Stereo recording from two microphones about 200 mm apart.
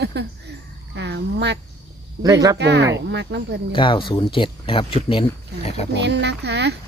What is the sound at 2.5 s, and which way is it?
Speech, 60° right (ahead or behind).